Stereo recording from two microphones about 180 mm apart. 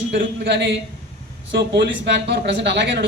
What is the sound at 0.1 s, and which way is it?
Speech, 70° right (ahead or behind).